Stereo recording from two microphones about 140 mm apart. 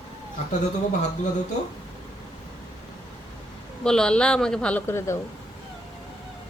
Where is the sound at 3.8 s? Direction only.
5° left (ahead or behind).